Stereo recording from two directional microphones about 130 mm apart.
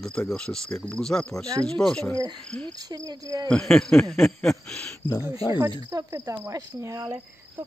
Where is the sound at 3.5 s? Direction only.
5° left (ahead or behind).